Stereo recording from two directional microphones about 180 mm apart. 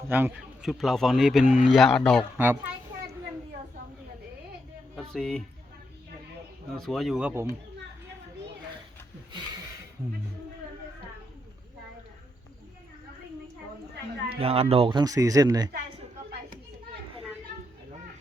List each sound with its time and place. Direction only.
0.1 s speech: 10° right (ahead or behind)
4.9 s speech: 5° left (ahead or behind)
6.7 s speech: centre (ahead or behind)
9.3 s a sound: 20° right (ahead or behind)
14.3 s a child's voice: 35° right (ahead or behind)